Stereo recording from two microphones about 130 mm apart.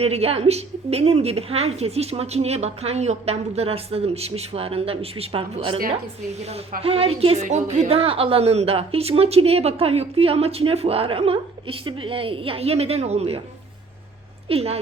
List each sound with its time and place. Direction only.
0.0 s a woman's voice: 50° right (ahead or behind)
14.4 s a woman's voice: 50° right (ahead or behind)